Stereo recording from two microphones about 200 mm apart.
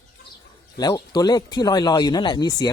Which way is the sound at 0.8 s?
20° left (ahead or behind).